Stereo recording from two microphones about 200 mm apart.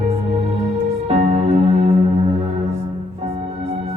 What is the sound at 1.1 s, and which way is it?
Music, 30° right (ahead or behind).